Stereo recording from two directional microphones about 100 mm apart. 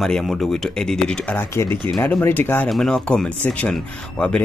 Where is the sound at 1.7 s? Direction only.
55° right (ahead or behind).